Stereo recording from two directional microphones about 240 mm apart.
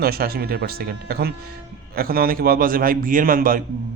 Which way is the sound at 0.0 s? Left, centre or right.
Right.